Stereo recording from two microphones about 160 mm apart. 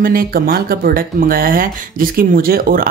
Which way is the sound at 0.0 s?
65° right (ahead or behind).